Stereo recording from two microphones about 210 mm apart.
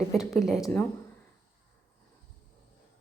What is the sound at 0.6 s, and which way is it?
Speech, 10° left (ahead or behind).